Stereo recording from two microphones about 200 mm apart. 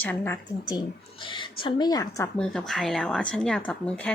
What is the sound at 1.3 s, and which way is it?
Speech, 25° left (ahead or behind).